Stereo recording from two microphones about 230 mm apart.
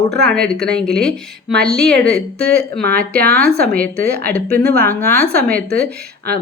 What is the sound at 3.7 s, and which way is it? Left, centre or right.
A woman's voice, centre.